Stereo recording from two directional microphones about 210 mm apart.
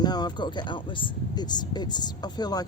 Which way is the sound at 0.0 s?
20° left (ahead or behind).